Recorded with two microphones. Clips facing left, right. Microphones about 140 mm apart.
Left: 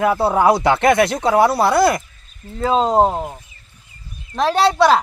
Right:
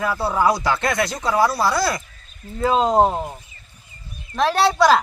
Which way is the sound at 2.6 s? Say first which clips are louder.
Left 1 dB; centre (ahead or behind).